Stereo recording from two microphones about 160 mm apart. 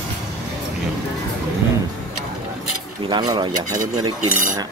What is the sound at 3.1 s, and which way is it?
Speech, 25° right (ahead or behind).